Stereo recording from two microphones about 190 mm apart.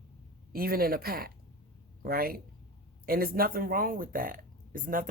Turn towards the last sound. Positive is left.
turn(degrees=-45)  # may be behind; listen again after turning